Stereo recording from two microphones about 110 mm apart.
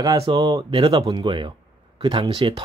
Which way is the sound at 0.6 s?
50° right (ahead or behind).